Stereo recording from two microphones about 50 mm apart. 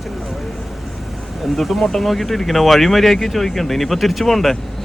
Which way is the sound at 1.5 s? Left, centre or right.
Centre.